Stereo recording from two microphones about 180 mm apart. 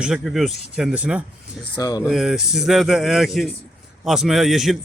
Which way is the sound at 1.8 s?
20° left (ahead or behind).